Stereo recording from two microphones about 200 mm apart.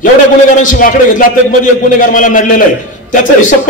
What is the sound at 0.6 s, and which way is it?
A man's voice, 45° left (ahead or behind).